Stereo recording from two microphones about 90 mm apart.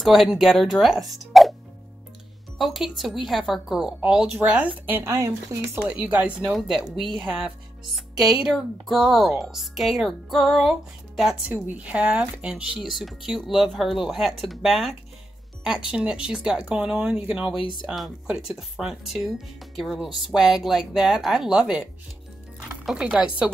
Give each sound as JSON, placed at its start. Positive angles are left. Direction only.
{"t": 0.0, "sound": "speech", "side_deg": 0}
{"t": 2.6, "sound": "speech", "side_deg": 0}
{"t": 5.9, "sound": "speech", "side_deg": -20}
{"t": 6.5, "sound": "speech", "side_deg": 0}
{"t": 7.2, "sound": "speech", "side_deg": -15}
{"t": 17.6, "sound": "speech", "side_deg": 70}
{"t": 17.8, "sound": "speech", "side_deg": 0}